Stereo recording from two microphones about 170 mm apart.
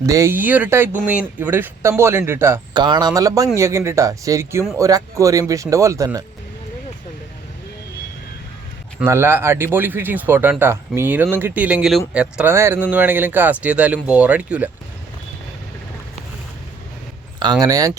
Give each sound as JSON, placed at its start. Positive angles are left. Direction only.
{"t": 0.0, "sound": "speech", "side_deg": -20}
{"t": 2.7, "sound": "speech", "side_deg": -25}
{"t": 9.0, "sound": "speech", "side_deg": -15}
{"t": 17.4, "sound": "speech", "side_deg": -25}